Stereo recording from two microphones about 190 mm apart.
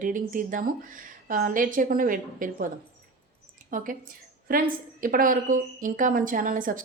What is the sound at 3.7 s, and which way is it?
A woman's voice, 45° right (ahead or behind).